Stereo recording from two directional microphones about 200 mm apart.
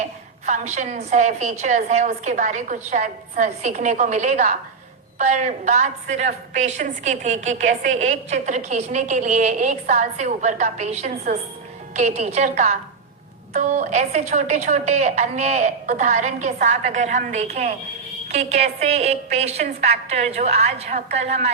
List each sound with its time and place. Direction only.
0.0 s a woman's voice: 35° right (ahead or behind)